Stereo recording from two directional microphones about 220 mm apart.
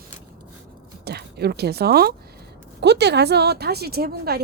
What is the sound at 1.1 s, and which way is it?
A woman's voice, 45° right (ahead or behind).